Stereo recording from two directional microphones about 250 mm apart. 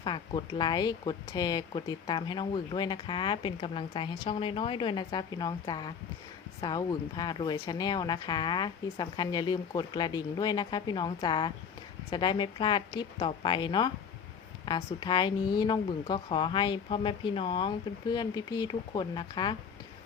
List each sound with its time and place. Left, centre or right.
0.0 s speech: centre